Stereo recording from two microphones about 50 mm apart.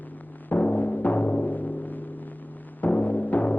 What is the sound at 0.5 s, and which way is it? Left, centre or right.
Timpani, left.